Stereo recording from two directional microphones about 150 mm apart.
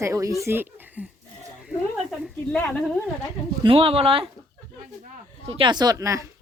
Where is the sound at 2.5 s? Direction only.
10° left (ahead or behind).